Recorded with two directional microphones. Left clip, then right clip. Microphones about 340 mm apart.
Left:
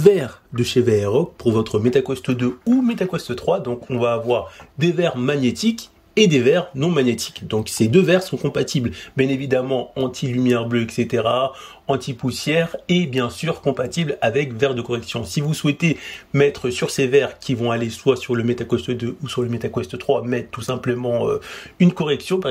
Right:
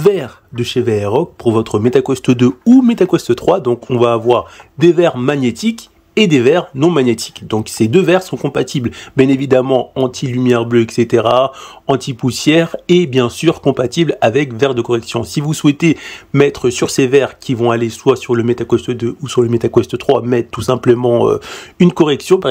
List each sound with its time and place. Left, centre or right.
0.0 s a man's voice: centre